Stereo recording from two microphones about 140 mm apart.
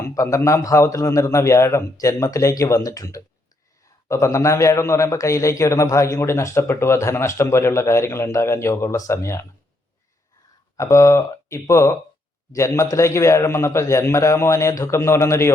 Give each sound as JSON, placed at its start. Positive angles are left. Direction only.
{"t": 0.0, "sound": "a man's voice", "side_deg": 20}
{"t": 10.8, "sound": "a man's voice", "side_deg": 20}